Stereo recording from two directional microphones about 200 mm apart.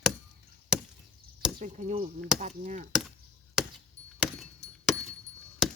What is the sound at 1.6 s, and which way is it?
Speech, 35° right (ahead or behind).